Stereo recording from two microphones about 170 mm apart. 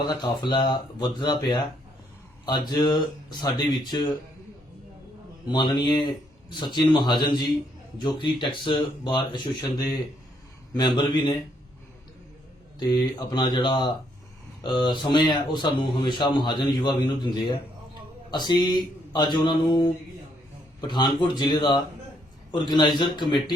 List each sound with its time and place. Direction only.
0.0 s speech: 25° left (ahead or behind)
5.5 s speech: 25° left (ahead or behind)
12.8 s speech: 25° left (ahead or behind)